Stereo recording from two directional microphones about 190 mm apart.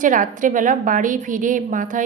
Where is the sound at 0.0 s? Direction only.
45° right (ahead or behind).